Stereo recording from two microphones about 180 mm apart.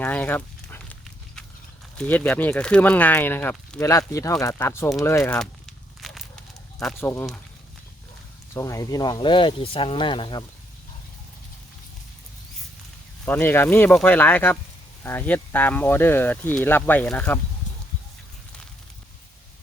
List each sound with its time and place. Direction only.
0.0 s a sound: 10° left (ahead or behind)
2.0 s speech: 10° left (ahead or behind)
4.9 s a sound: 15° left (ahead or behind)
6.7 s speech: centre (ahead or behind)
7.0 s speech: 15° left (ahead or behind)
8.5 s speech: 20° left (ahead or behind)
13.2 s speech: 10° left (ahead or behind)